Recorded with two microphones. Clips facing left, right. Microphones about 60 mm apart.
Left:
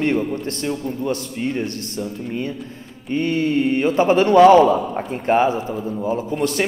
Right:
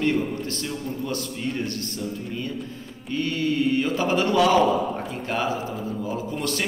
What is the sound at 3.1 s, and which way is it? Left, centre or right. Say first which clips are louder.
A man's voice: left 6 dB; left.